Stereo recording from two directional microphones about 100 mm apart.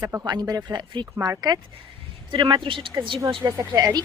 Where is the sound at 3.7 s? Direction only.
40° right (ahead or behind).